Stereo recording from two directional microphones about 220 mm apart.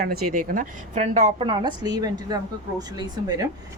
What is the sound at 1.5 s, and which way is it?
A woman's voice, 20° right (ahead or behind).